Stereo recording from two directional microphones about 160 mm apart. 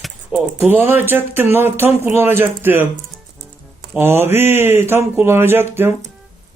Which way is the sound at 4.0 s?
15° right (ahead or behind).